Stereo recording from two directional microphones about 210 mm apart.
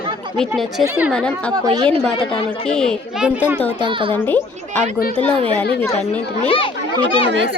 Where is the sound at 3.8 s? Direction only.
25° right (ahead or behind).